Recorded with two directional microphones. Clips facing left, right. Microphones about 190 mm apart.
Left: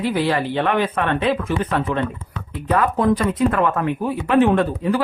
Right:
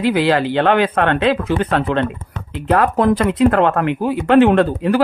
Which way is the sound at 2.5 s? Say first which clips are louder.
Right 4 dB; 80° right.